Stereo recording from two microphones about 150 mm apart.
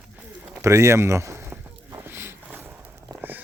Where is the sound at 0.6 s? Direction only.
20° right (ahead or behind).